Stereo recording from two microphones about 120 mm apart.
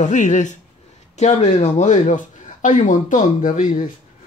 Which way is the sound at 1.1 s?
75° left (ahead or behind).